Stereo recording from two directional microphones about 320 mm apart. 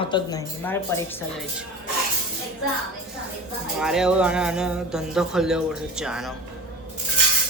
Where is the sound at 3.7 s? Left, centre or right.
Centre.